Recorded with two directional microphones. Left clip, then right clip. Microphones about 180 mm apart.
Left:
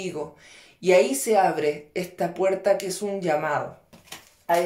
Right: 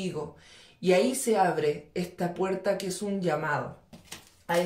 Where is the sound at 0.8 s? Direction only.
30° left (ahead or behind).